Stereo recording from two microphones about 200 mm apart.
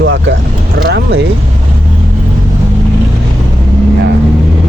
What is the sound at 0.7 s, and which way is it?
Speech, 55° right (ahead or behind).